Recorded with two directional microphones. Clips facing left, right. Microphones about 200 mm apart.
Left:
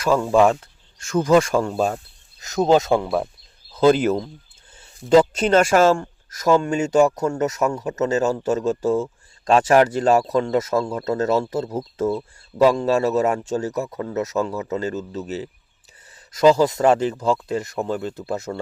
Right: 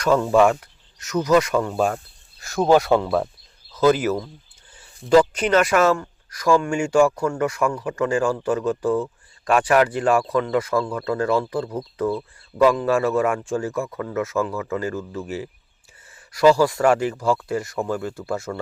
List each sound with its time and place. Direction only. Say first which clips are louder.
0.0 s speech: even; 10° left (ahead or behind); by 1.9 s 35° left (ahead or behind)
2.4 s speech: even; 20° left (ahead or behind)
3.7 s a sound: left 2 dB; 30° left (ahead or behind)
4.0 s speech: left 3 dB; 25° left (ahead or behind)